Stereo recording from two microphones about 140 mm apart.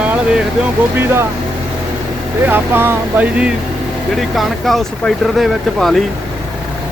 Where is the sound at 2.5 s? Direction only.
15° right (ahead or behind); by 6.0 s centre (ahead or behind).